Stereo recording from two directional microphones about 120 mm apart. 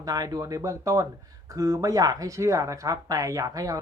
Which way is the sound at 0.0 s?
30° right (ahead or behind).